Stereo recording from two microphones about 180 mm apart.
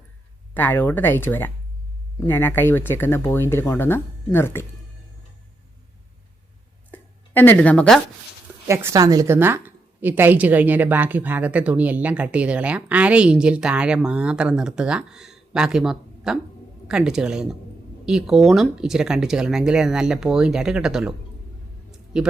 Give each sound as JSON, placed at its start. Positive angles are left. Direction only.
{"t": 0.5, "sound": "speech", "side_deg": 10}
{"t": 6.9, "sound": "a sound", "side_deg": 10}
{"t": 8.6, "sound": "a woman's voice", "side_deg": -15}